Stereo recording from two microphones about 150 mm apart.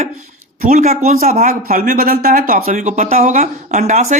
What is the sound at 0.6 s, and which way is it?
A man's voice, 65° right (ahead or behind).